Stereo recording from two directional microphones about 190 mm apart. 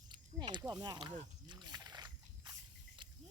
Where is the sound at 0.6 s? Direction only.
20° right (ahead or behind).